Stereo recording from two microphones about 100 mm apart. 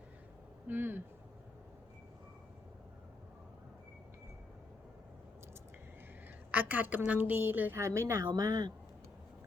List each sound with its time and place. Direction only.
0.7 s a woman's voice: 20° right (ahead or behind)
6.5 s a woman's voice: 15° right (ahead or behind)
8.4 s speech: 40° right (ahead or behind)